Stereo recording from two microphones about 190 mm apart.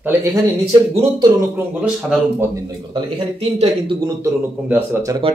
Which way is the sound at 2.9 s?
25° right (ahead or behind).